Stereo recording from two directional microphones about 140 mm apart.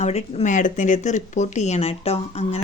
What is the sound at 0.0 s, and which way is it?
Speech, 50° left (ahead or behind).